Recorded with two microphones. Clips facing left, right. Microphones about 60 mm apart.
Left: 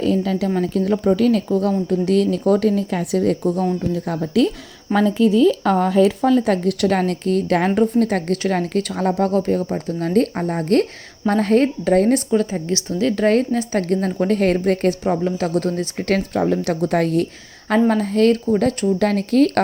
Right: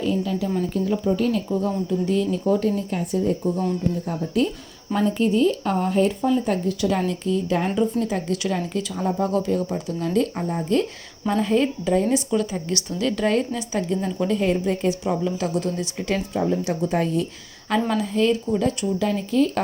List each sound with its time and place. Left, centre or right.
0.0 s a woman's voice: left
4.9 s speech: left
5.7 s speech: left
9.3 s speech: left
10.6 s speech: left
12.6 s speech: left
15.0 s speech: left
17.7 s speech: left